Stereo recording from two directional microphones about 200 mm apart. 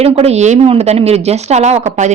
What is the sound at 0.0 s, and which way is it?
Speech, 30° right (ahead or behind).